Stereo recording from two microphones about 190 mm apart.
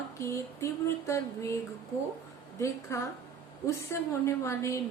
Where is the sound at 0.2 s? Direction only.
15° left (ahead or behind).